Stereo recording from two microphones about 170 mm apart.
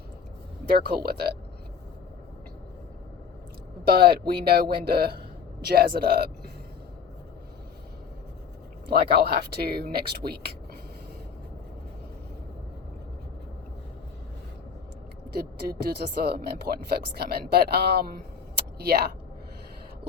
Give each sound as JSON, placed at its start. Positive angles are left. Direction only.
{"t": 0.6, "sound": "speech", "side_deg": -65}
{"t": 3.8, "sound": "speech", "side_deg": -70}
{"t": 8.9, "sound": "speech", "side_deg": -70}
{"t": 15.3, "sound": "speech", "side_deg": -65}